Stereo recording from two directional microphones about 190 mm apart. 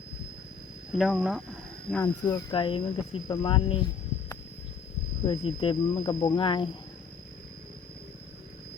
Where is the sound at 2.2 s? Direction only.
25° left (ahead or behind).